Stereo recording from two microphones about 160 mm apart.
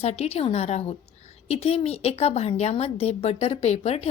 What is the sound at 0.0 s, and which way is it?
A woman's voice, 40° left (ahead or behind).